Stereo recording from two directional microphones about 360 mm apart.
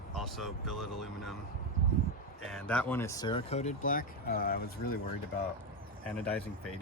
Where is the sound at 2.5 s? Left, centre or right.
Centre; by 4.7 s left.